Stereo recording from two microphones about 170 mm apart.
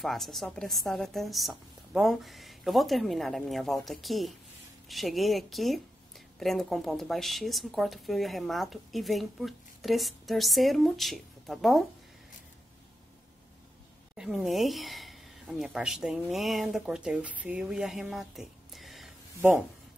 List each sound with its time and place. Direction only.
0.0 s speech: centre (ahead or behind)
14.1 s speech: 5° right (ahead or behind)